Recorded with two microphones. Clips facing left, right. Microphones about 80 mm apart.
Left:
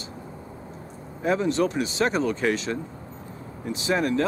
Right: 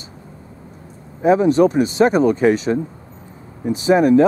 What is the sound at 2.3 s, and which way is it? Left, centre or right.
Speech, centre.